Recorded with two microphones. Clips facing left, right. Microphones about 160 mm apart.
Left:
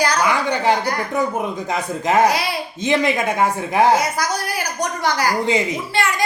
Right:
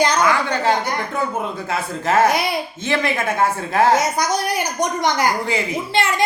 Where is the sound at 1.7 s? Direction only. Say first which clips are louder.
Even; 15° left (ahead or behind).